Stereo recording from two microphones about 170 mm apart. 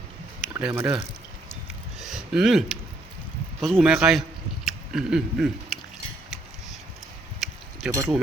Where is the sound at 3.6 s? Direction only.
Centre (ahead or behind).